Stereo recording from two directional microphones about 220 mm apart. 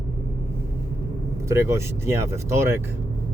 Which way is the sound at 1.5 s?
15° right (ahead or behind).